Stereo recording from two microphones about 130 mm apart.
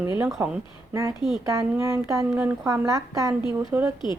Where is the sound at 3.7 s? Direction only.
10° right (ahead or behind).